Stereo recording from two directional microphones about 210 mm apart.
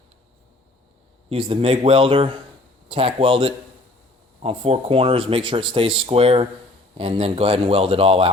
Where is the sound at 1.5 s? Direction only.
25° right (ahead or behind).